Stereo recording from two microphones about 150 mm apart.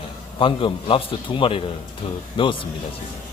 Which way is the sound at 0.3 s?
35° left (ahead or behind).